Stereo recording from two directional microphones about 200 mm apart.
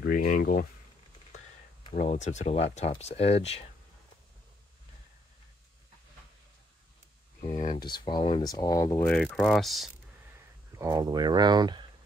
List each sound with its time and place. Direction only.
0.0 s speech: 45° left (ahead or behind)
2.0 s speech: 35° left (ahead or behind)
7.4 s speech: 40° left (ahead or behind)
7.8 s speech: 20° left (ahead or behind)
9.0 s speech: 5° left (ahead or behind)
10.7 s speech: 15° right (ahead or behind)